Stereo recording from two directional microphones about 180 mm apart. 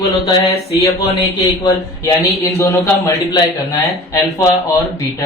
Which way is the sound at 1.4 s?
20° left (ahead or behind).